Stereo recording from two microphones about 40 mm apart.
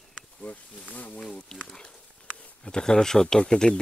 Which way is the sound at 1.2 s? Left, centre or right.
Left.